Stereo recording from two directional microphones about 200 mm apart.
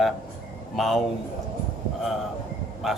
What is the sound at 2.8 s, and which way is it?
Speech, centre (ahead or behind).